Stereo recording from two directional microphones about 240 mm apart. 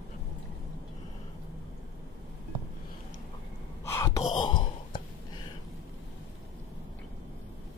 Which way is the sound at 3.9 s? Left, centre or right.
Centre.